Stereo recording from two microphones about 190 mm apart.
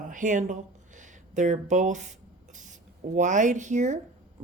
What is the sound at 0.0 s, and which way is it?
Speech, 45° right (ahead or behind).